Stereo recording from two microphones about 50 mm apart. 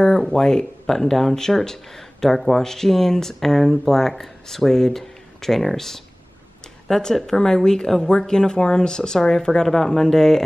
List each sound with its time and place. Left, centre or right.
0.0 s speech: centre